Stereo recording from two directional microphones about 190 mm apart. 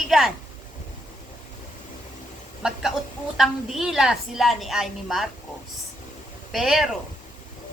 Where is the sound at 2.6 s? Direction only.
5° right (ahead or behind).